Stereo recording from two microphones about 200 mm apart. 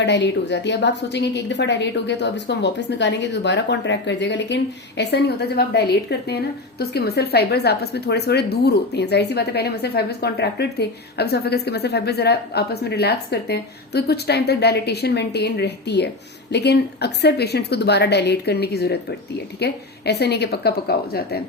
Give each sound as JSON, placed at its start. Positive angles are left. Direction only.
{"t": 0.0, "sound": "a woman's voice", "side_deg": 60}